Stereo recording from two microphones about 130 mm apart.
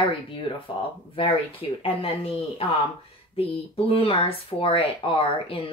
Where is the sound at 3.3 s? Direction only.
45° left (ahead or behind).